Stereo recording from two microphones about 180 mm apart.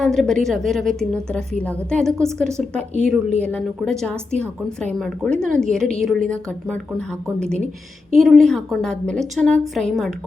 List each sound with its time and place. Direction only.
0.0 s a woman's voice: centre (ahead or behind)